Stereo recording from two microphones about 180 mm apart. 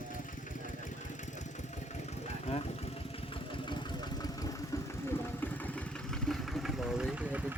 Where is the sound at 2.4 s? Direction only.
35° left (ahead or behind).